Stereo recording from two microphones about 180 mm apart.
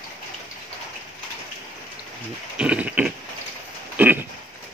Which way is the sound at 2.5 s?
5° right (ahead or behind).